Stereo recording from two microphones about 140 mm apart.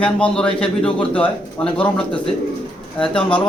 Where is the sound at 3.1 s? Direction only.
40° left (ahead or behind).